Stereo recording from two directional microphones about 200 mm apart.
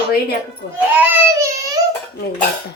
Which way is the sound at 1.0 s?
15° right (ahead or behind).